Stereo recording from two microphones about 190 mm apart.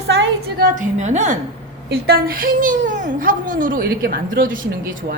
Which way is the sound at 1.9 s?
50° right (ahead or behind).